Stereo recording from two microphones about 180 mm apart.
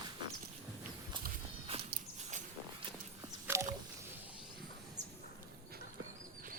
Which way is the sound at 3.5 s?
15° right (ahead or behind).